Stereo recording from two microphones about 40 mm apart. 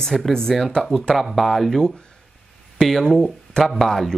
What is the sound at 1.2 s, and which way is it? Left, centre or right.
Speech, centre.